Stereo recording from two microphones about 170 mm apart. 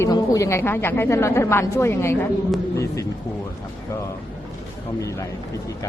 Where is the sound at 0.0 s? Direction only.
20° left (ahead or behind).